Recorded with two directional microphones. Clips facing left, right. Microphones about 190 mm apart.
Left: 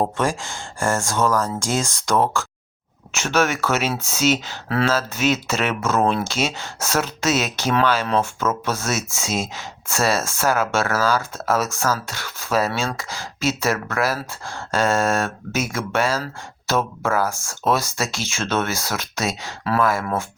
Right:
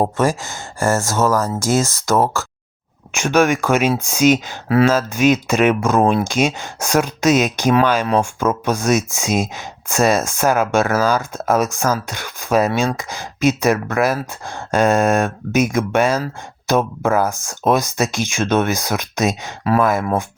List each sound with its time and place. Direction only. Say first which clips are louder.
0.2 s speech: right 5 dB; 5° right (ahead or behind)